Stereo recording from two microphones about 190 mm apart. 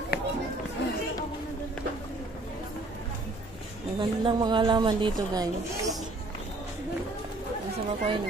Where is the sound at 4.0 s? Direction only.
25° right (ahead or behind).